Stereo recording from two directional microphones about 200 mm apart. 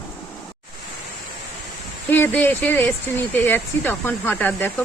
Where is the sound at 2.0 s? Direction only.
10° left (ahead or behind).